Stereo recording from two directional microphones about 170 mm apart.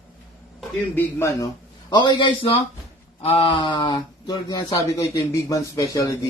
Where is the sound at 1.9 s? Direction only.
25° left (ahead or behind).